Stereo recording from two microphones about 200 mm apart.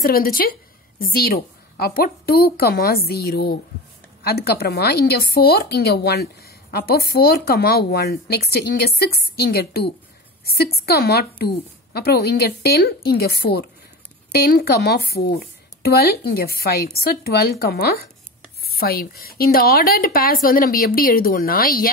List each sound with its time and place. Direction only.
0.0 s a woman's voice: 50° left (ahead or behind)